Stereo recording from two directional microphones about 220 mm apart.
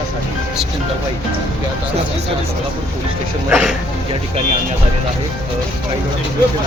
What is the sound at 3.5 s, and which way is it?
Speech, 5° right (ahead or behind).